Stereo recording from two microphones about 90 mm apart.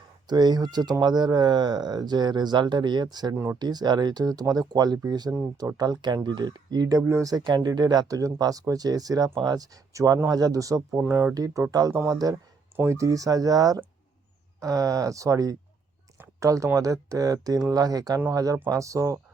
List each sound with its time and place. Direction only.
0.3 s speech: 50° right (ahead or behind)
3.3 s speech: 25° right (ahead or behind)
3.6 s speech: 50° right (ahead or behind)
11.0 s speech: 25° right (ahead or behind)
11.3 s speech: 40° right (ahead or behind)
12.7 s speech: 30° right (ahead or behind)